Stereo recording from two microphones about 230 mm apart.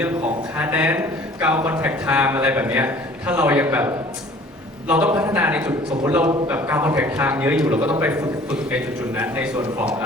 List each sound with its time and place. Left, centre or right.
0.5 s a man's voice: centre